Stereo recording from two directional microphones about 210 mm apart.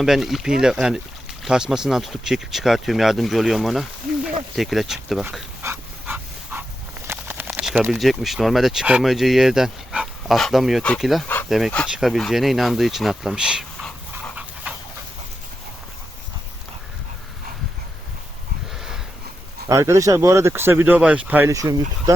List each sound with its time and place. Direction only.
0.0 s speech: centre (ahead or behind)
5.6 s dog: 10° right (ahead or behind)
7.1 s speech: 10° right (ahead or behind)
14.7 s dog: 5° right (ahead or behind)
19.6 s speech: 15° right (ahead or behind)